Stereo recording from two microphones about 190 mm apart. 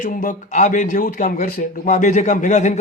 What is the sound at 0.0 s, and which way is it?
Speech, 45° left (ahead or behind).